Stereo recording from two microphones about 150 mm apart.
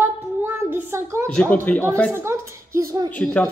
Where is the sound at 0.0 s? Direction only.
15° right (ahead or behind).